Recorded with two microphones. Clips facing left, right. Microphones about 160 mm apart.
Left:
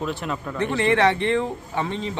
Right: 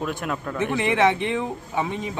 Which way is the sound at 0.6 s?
15° right (ahead or behind).